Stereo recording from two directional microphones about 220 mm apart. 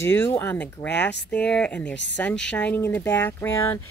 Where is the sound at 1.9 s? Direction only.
55° left (ahead or behind).